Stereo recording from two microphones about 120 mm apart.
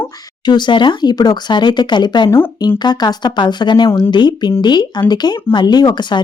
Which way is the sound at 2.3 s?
20° left (ahead or behind).